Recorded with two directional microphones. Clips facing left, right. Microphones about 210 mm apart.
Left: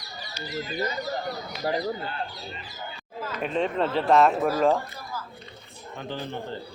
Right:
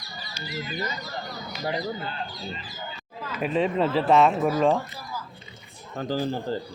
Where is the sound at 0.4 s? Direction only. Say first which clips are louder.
Left 2 dB; 40° left (ahead or behind).